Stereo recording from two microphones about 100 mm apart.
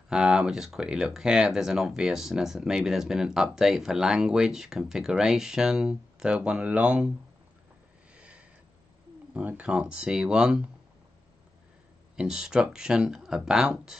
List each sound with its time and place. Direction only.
0.1 s speech: 10° right (ahead or behind)
8.1 s a sound: 10° right (ahead or behind)
9.3 s speech: 15° right (ahead or behind)
12.2 s speech: 5° right (ahead or behind)